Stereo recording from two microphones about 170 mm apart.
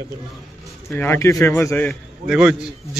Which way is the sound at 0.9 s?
10° left (ahead or behind).